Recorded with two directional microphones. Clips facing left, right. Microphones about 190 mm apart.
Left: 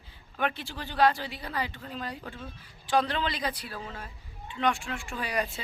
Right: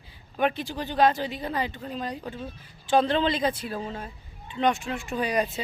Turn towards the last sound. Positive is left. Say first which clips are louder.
# right 6 dB
turn(degrees=-20)  # may be behind; listen again after turning